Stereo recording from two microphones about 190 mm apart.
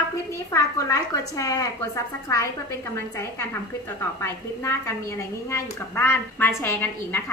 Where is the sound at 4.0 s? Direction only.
15° left (ahead or behind).